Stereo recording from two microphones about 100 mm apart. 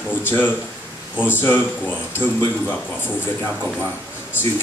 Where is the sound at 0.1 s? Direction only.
20° left (ahead or behind).